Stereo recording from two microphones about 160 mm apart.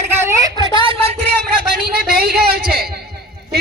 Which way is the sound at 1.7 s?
70° right (ahead or behind).